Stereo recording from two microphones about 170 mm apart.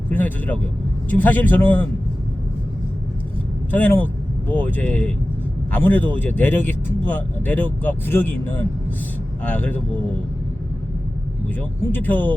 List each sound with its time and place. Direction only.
0.1 s speech: 10° left (ahead or behind)
3.7 s speech: 10° left (ahead or behind)
9.4 s speech: 10° left (ahead or behind)
11.4 s speech: 10° left (ahead or behind)